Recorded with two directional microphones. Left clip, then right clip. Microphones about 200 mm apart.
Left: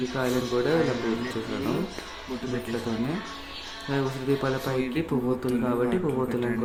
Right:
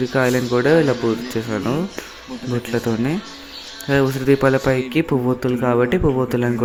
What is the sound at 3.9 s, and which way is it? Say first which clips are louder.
Speech: right 11 dB; 40° right (ahead or behind).